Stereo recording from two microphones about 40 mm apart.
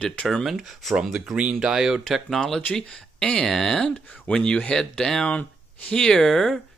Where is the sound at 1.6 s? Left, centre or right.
Centre.